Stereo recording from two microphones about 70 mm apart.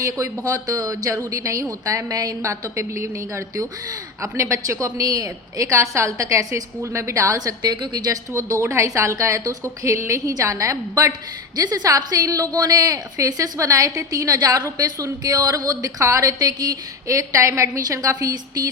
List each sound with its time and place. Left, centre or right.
0.0 s a woman's voice: right
2.4 s a woman's voice: right
8.3 s a woman's voice: right
11.5 s a woman's voice: right
17.1 s a woman's voice: right